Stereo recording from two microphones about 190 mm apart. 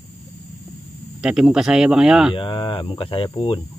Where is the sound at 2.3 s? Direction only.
25° left (ahead or behind).